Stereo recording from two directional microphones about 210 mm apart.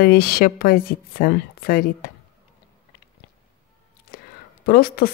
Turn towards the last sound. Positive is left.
turn(degrees=45)  # may be behind; listen again after turning